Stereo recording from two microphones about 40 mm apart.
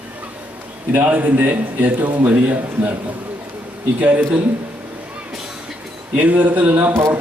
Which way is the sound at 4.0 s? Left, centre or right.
Right.